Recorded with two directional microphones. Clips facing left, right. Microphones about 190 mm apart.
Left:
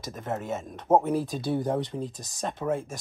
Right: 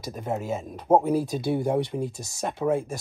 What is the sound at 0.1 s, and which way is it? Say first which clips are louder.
Speech: right 3 dB; 10° right (ahead or behind).